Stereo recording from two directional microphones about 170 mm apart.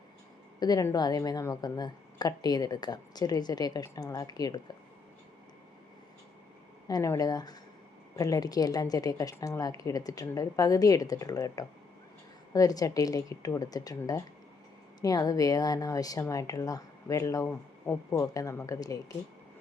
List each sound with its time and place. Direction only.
0.6 s speech: 20° left (ahead or behind)
6.8 s speech: 20° left (ahead or behind)